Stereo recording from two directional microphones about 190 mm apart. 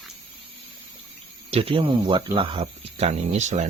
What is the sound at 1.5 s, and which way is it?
Speech, 30° right (ahead or behind).